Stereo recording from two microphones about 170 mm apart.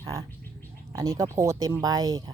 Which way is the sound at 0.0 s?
15° right (ahead or behind).